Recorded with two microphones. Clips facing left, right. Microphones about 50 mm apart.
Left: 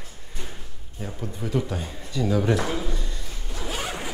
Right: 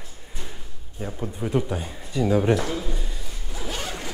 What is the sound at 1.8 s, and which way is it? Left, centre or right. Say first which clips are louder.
Speech: even; centre.